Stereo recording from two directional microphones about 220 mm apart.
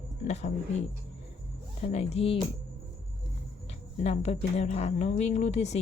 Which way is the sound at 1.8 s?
30° left (ahead or behind).